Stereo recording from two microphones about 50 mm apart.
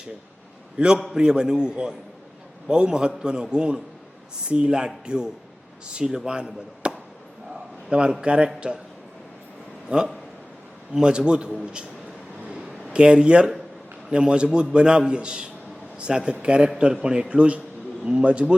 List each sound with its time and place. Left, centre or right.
0.8 s a man's voice: centre
9.9 s a man's voice: right
12.9 s a man's voice: centre